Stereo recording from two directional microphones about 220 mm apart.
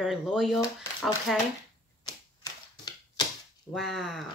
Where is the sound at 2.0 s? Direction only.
15° left (ahead or behind).